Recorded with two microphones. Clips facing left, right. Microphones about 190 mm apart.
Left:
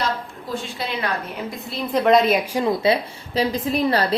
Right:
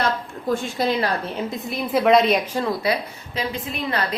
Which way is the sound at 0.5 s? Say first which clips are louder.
Right 5 dB; 40° right (ahead or behind).